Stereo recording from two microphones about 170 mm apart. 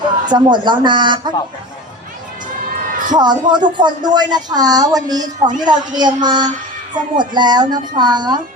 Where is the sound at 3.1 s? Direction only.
25° right (ahead or behind).